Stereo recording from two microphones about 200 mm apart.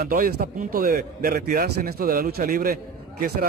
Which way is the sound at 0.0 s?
50° right (ahead or behind).